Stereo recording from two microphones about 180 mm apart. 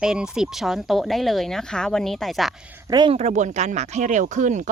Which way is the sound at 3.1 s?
40° right (ahead or behind).